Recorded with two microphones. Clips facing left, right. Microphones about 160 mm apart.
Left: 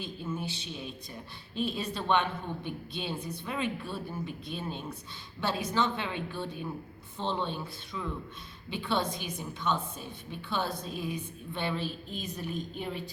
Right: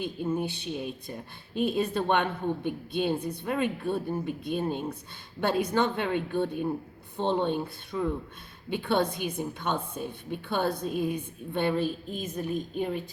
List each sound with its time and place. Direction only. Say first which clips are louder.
0.3 s a woman's voice: right 7 dB; 55° right (ahead or behind)